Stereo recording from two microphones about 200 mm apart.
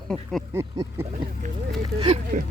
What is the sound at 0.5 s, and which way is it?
Speech, 15° right (ahead or behind).